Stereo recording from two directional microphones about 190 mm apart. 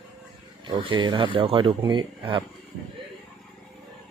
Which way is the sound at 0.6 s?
25° right (ahead or behind).